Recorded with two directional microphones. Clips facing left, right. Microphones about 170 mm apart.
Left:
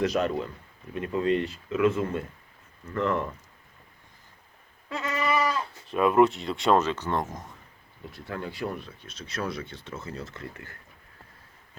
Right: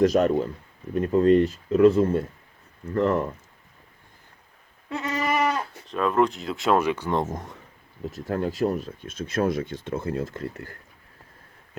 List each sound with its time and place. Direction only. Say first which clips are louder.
0.0 s speech: right 6 dB; 40° right (ahead or behind)
4.9 s goat: right 3 dB; 25° right (ahead or behind)
5.1 s goat: right 2 dB; 50° right (ahead or behind)
5.6 s speech: left 2 dB; 10° left (ahead or behind); by 7.2 s 10° right (ahead or behind)
8.0 s speech: right 8 dB; 45° right (ahead or behind)